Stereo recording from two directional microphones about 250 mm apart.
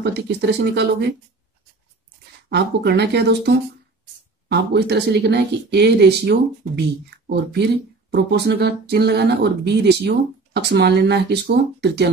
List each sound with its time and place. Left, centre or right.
0.0 s speech: right
2.5 s speech: right